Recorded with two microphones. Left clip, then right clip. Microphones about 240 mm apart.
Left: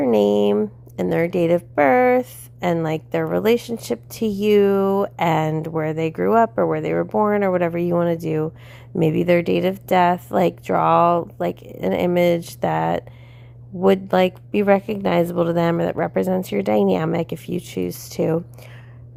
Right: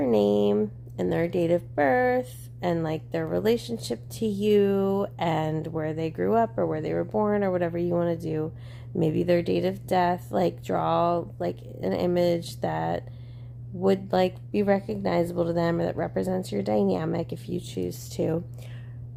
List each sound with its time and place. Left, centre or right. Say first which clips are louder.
0.0 s speech: left 6 dB; left